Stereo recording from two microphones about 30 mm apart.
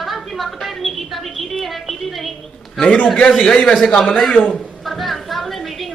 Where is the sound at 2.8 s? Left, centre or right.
Left.